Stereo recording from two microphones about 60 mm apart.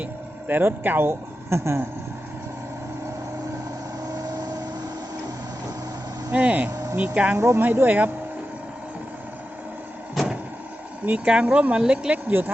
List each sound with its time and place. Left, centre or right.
0.0 s speech: right
4.1 s vehicle: right
6.3 s speech: right
6.7 s vehicle: right
6.9 s speech: right
7.3 s speech: right
7.6 s speech: right
10.2 s vehicle: centre
11.3 s speech: centre